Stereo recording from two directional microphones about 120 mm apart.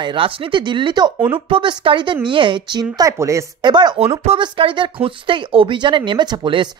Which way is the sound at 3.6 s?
40° right (ahead or behind).